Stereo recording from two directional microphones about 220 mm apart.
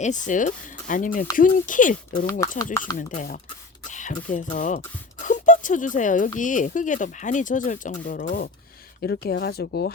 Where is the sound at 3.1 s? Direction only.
30° left (ahead or behind).